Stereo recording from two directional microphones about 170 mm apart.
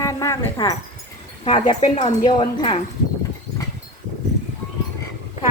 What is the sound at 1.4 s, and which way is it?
Speech, 35° left (ahead or behind).